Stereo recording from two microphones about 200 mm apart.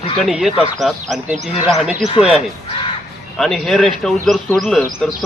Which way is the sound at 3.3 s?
Centre (ahead or behind).